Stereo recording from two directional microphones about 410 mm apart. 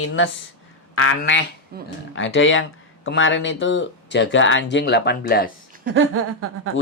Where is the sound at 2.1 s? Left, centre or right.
Left.